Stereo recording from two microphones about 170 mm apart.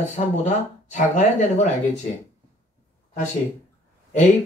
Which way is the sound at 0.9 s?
45° left (ahead or behind).